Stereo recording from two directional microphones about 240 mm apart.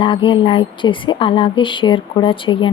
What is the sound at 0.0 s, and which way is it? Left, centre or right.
A woman's voice, left.